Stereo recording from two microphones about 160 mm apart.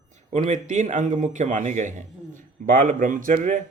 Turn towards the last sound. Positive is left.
turn(degrees=-55)  # may be behind; listen again after turning